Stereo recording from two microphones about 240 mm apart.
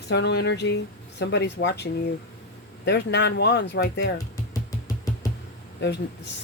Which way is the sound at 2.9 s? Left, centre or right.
Left.